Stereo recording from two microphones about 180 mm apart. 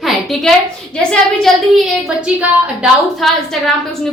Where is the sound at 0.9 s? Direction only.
5° left (ahead or behind).